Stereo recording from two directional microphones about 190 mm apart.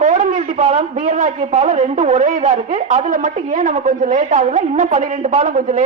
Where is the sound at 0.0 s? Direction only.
40° right (ahead or behind).